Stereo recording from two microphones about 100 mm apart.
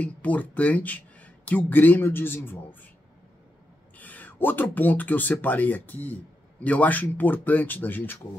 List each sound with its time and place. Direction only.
0.0 s speech: 15° left (ahead or behind)
4.0 s speech: 15° left (ahead or behind)